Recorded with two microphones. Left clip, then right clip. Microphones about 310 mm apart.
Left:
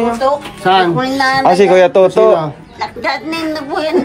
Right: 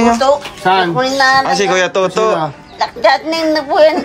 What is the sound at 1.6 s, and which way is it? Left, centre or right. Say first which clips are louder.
Speech: left 5 dB; centre.